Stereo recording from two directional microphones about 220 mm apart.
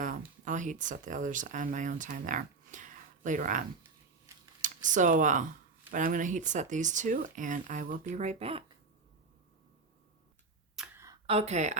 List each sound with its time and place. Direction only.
0.0 s speech: 35° right (ahead or behind)
4.3 s computer keyboard: 10° right (ahead or behind)
4.6 s speech: 35° right (ahead or behind)
10.8 s a sound: 10° right (ahead or behind)
11.3 s speech: 30° right (ahead or behind)